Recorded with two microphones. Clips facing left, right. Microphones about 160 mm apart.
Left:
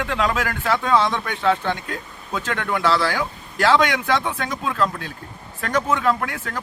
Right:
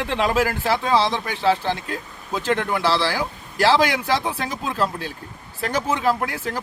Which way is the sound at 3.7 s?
35° right (ahead or behind).